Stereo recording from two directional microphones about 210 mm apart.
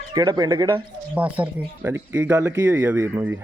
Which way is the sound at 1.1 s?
5° right (ahead or behind).